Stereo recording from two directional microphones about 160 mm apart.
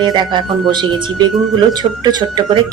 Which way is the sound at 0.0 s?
30° right (ahead or behind).